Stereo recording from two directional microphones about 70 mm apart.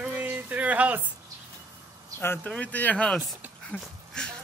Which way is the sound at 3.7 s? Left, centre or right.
Centre.